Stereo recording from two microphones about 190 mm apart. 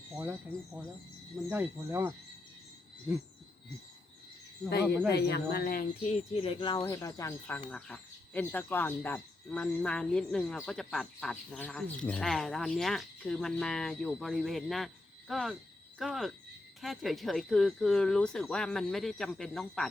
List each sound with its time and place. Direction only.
0.2 s speech: 5° right (ahead or behind)
4.7 s speech: 60° left (ahead or behind)
6.3 s speech: 30° left (ahead or behind); by 19.9 s centre (ahead or behind)